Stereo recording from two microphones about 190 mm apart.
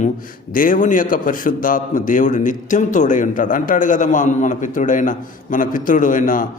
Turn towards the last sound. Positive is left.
turn(degrees=45)  # may be behind; listen again after turning